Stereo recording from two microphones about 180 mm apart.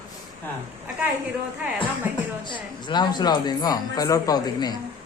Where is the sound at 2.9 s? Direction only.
25° left (ahead or behind).